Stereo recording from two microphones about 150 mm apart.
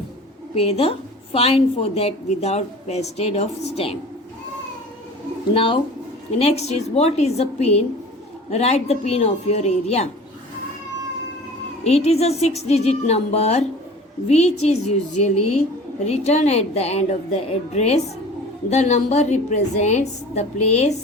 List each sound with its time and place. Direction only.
0.5 s a woman's voice: 40° left (ahead or behind)
5.5 s a woman's voice: 40° left (ahead or behind)
11.8 s a woman's voice: 45° left (ahead or behind)